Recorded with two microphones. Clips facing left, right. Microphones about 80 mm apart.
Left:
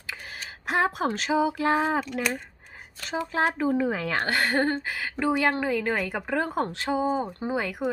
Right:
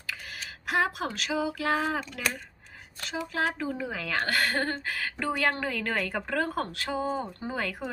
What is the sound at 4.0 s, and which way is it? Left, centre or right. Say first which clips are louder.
Speech: left 3 dB; left.